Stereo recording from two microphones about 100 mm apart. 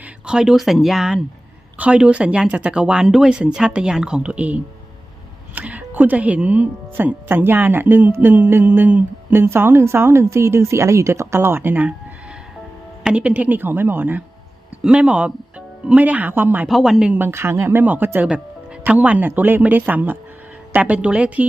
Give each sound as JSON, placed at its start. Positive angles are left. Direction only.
{"t": 0.0, "sound": "speech", "side_deg": -10}
{"t": 13.0, "sound": "speech", "side_deg": -10}
{"t": 16.6, "sound": "speech", "side_deg": 0}
{"t": 17.2, "sound": "speech", "side_deg": -25}